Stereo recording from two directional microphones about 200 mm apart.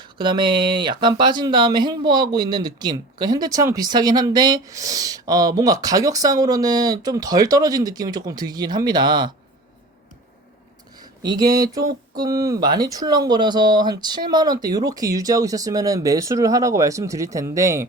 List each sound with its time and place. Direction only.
0.0 s speech: 25° right (ahead or behind)
11.0 s speech: 20° right (ahead or behind)